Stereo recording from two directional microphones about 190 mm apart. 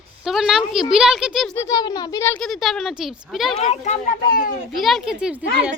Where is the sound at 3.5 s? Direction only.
35° left (ahead or behind).